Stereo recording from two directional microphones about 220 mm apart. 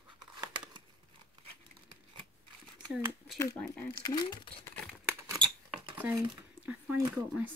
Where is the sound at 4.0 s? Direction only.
20° left (ahead or behind).